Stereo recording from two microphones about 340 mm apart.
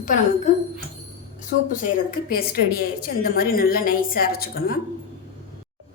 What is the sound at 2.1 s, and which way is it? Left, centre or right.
A woman's voice, left.